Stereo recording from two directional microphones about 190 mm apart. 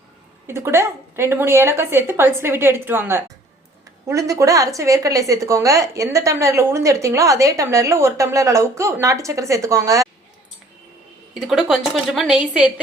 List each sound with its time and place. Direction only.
0.4 s a woman's voice: 15° right (ahead or behind)
11.3 s a woman's voice: centre (ahead or behind)